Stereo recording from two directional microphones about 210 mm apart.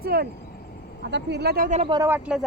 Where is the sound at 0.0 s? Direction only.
45° right (ahead or behind).